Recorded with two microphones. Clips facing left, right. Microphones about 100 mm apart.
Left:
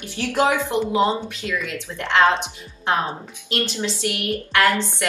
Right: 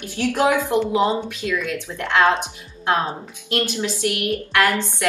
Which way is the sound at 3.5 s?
15° right (ahead or behind).